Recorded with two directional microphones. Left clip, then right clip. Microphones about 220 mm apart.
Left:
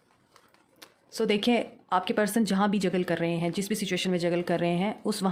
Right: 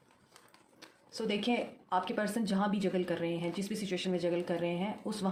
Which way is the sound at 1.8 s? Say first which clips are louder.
Left 6 dB; 50° left (ahead or behind).